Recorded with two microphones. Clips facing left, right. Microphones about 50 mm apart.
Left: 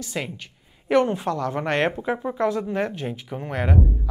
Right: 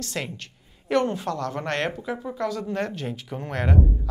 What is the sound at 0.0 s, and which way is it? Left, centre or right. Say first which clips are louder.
A woman's voice: left 1 dB; centre.